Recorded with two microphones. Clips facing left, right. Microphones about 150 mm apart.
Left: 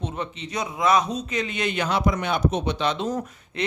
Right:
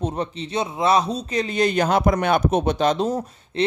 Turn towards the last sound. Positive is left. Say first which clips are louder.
# right 5 dB
turn(degrees=-30)  # may be behind; listen again after turning